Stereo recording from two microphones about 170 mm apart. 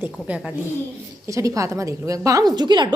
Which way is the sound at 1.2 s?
20° right (ahead or behind).